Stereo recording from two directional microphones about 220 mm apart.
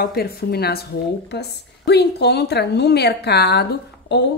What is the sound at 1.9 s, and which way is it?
A woman's voice, 50° left (ahead or behind).